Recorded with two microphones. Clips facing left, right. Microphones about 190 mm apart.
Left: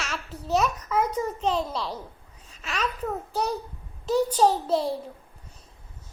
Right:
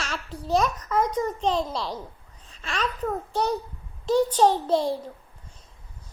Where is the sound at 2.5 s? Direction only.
35° right (ahead or behind).